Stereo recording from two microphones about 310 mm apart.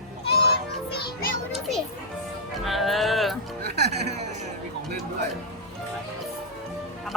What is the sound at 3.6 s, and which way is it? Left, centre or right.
Speech, right.